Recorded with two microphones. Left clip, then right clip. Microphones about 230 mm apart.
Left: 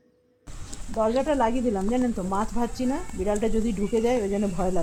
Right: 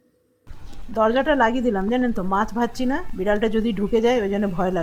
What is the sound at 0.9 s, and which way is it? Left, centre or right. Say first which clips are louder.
Speech: right 5 dB; centre.